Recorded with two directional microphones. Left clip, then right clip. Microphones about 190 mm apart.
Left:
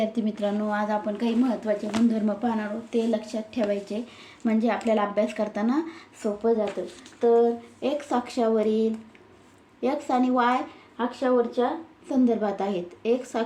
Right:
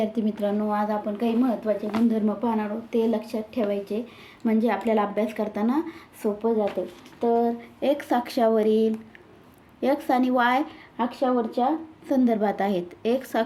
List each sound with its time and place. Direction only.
0.0 s a woman's voice: 15° right (ahead or behind)
2.5 s speech: 20° right (ahead or behind)
7.2 s speech: 40° right (ahead or behind)